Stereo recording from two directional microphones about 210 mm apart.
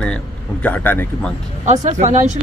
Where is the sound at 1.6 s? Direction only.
35° right (ahead or behind).